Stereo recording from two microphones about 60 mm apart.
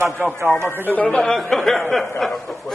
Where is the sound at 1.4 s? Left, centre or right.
Centre.